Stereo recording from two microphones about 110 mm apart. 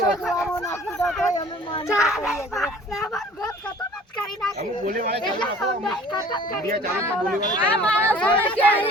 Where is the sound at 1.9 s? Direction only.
5° right (ahead or behind).